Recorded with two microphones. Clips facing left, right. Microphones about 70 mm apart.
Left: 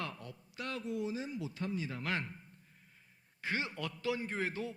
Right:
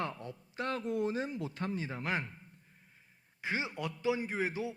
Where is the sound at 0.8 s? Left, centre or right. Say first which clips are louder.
Right 3 dB; right.